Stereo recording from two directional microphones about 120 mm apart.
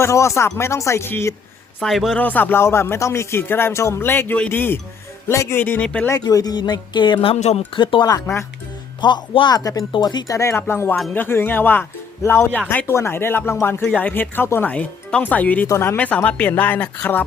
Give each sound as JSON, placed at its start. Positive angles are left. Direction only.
{"t": 0.0, "sound": "speech", "side_deg": 25}
{"t": 1.8, "sound": "a man's voice", "side_deg": 0}
{"t": 2.1, "sound": "speech", "side_deg": 15}
{"t": 6.1, "sound": "speech", "side_deg": 30}
{"t": 7.3, "sound": "speech", "side_deg": 65}
{"t": 7.8, "sound": "speech", "side_deg": 45}
{"t": 8.0, "sound": "speech", "side_deg": 25}
{"t": 9.0, "sound": "speech", "side_deg": 40}